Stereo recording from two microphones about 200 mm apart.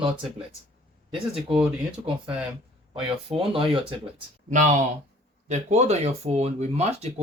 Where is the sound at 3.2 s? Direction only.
25° right (ahead or behind).